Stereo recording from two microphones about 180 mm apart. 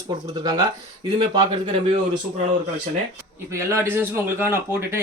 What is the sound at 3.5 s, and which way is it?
Speech, 15° right (ahead or behind).